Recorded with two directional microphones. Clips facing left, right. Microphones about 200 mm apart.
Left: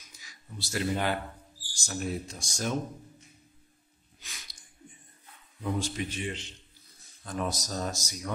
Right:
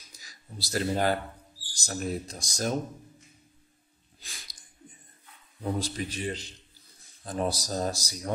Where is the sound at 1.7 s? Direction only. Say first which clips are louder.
Right 1 dB; 40° right (ahead or behind).